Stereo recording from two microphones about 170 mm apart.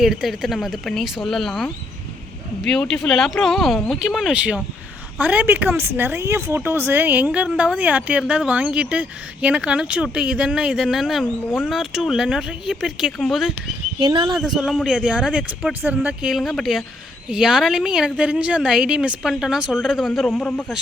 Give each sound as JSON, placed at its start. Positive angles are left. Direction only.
{"t": 0.0, "sound": "a woman's voice", "side_deg": 0}
{"t": 11.4, "sound": "speech", "side_deg": 10}
{"t": 11.7, "sound": "a woman's voice", "side_deg": 0}
{"t": 14.0, "sound": "speech", "side_deg": -25}
{"t": 14.3, "sound": "a woman's voice", "side_deg": 0}